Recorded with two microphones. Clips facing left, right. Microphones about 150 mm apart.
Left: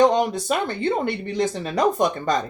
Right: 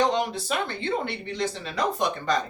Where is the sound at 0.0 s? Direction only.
45° left (ahead or behind).